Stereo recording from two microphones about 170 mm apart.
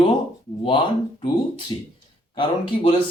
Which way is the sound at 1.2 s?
30° left (ahead or behind).